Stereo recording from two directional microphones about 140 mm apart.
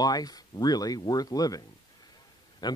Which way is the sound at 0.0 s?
25° left (ahead or behind).